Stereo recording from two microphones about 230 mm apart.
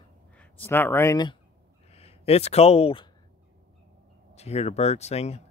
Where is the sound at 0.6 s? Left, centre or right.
Centre.